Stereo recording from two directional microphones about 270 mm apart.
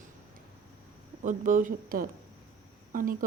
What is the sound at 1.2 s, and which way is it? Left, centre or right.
Speech, right.